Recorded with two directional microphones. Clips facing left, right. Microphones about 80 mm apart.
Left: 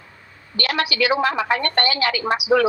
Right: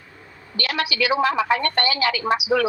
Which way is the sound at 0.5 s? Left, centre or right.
Left.